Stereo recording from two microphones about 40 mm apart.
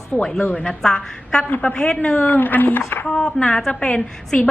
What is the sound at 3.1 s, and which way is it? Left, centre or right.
Speech, left.